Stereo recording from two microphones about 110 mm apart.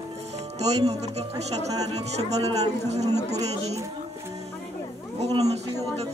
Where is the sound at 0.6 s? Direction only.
75° right (ahead or behind).